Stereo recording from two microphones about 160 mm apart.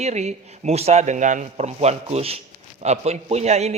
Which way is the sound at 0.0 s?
45° right (ahead or behind).